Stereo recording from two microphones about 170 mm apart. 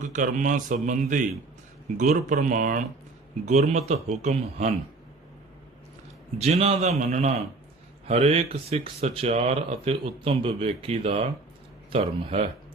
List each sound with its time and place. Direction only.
0.0 s speech: 50° right (ahead or behind)
6.4 s speech: 40° right (ahead or behind)